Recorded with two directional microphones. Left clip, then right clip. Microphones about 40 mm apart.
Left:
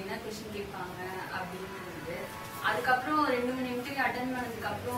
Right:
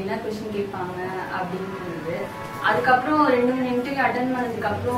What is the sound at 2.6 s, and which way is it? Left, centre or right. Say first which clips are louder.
A woman's voice: right 9 dB; left.